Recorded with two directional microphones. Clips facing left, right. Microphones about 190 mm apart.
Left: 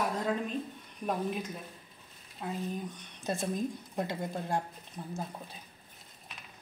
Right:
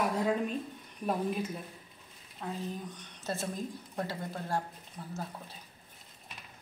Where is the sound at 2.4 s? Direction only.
10° left (ahead or behind).